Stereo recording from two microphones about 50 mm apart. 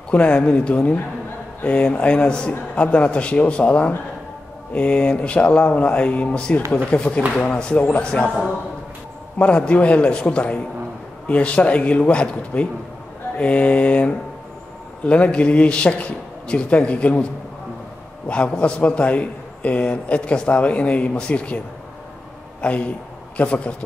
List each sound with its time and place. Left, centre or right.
0.1 s a man's voice: left
9.4 s a man's voice: left
18.3 s a man's voice: left